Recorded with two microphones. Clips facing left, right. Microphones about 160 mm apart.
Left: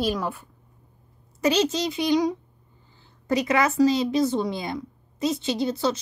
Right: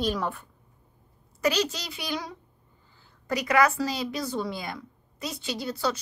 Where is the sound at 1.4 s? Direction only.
20° left (ahead or behind).